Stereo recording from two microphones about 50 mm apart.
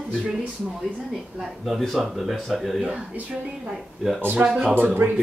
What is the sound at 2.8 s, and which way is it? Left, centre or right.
Speech, right.